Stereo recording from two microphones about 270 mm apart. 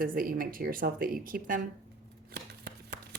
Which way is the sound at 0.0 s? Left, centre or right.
Right.